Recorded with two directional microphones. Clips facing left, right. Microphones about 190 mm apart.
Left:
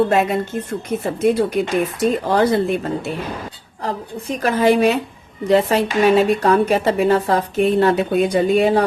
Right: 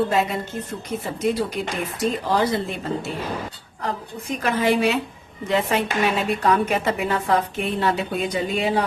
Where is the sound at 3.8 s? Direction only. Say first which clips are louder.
Left 3 dB; 35° left (ahead or behind).